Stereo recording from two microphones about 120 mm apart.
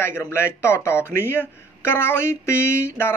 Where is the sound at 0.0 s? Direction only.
20° left (ahead or behind).